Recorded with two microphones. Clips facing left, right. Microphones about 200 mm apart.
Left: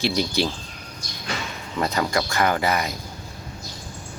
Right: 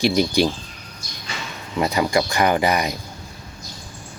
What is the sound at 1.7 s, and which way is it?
Speech, 10° right (ahead or behind).